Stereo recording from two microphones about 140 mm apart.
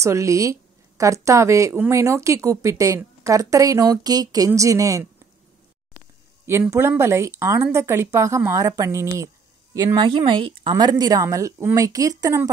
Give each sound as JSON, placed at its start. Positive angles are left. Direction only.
{"t": 0.0, "sound": "a woman's voice", "side_deg": -20}
{"t": 6.7, "sound": "a woman's voice", "side_deg": -20}
{"t": 9.8, "sound": "a woman's voice", "side_deg": -30}